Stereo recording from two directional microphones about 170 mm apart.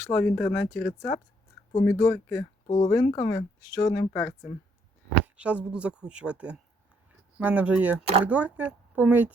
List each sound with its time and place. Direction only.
0.0 s speech: 10° left (ahead or behind)
5.2 s speech: 5° right (ahead or behind)